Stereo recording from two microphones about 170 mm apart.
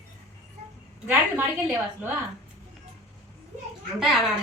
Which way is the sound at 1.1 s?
10° right (ahead or behind).